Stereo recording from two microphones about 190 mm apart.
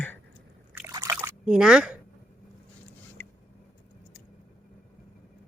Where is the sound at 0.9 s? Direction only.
20° right (ahead or behind).